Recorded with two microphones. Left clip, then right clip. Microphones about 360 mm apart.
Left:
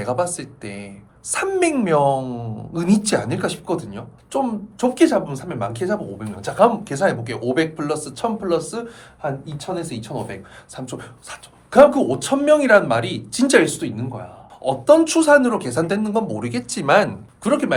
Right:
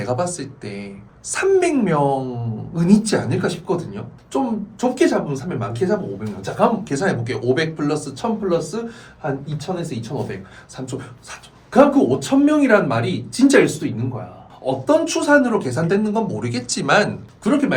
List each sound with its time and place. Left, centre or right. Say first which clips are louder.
0.0 s speech: even; left